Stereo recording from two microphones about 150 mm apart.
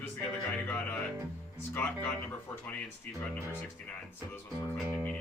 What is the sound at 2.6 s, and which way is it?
Speech, 5° left (ahead or behind).